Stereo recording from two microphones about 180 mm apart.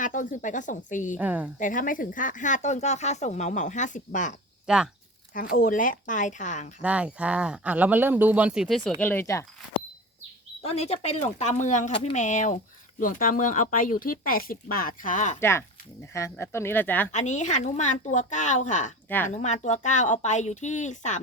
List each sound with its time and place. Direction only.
0.0 s speech: 45° left (ahead or behind)
1.1 s speech: 10° right (ahead or behind)
1.5 s speech: 45° left (ahead or behind)
4.6 s speech: 5° right (ahead or behind)
5.3 s speech: 50° left (ahead or behind)
6.8 s speech: 5° right (ahead or behind); by 9.5 s 15° left (ahead or behind)
10.6 s speech: 35° left (ahead or behind)
15.4 s speech: 15° left (ahead or behind)
17.1 s speech: 40° left (ahead or behind)
19.0 s speech: 10° left (ahead or behind)
19.3 s speech: 40° left (ahead or behind)